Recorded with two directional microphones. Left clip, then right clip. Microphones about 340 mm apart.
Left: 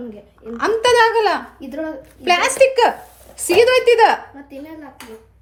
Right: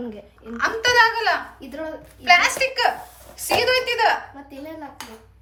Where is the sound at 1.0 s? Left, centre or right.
Left.